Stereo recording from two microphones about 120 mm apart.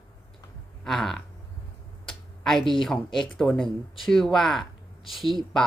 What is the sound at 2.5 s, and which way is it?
Speech, 40° left (ahead or behind).